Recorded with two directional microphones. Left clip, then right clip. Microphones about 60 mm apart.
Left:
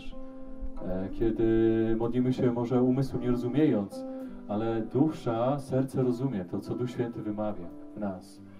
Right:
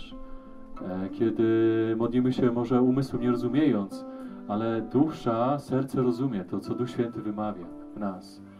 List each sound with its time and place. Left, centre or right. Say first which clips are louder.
0.7 s speech: right 2 dB; right